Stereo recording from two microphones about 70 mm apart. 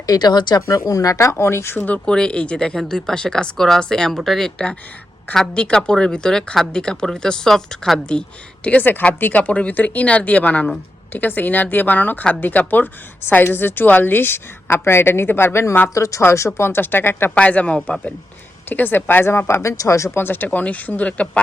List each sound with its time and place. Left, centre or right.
0.0 s speech: left
0.6 s speech: left
1.9 s speech: centre
8.6 s speech: left
11.1 s a woman's voice: left
16.0 s speech: left
16.6 s a woman's voice: left
17.3 s speech: centre